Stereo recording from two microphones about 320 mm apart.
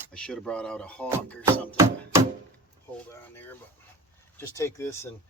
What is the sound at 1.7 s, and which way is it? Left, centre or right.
Music, centre.